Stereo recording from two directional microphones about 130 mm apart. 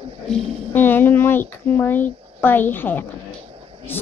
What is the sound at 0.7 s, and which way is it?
A child's voice, 15° left (ahead or behind).